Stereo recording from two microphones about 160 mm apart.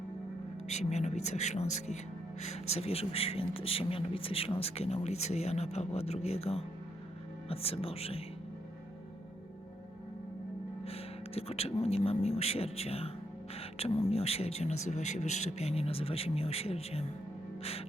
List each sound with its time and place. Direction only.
0.7 s a man's voice: 45° left (ahead or behind)
10.8 s speech: 40° left (ahead or behind)
13.6 s music: 40° left (ahead or behind)
14.1 s a man's voice: 40° left (ahead or behind)
17.6 s music: 40° left (ahead or behind)